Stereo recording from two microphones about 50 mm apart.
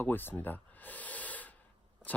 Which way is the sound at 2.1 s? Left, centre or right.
Left.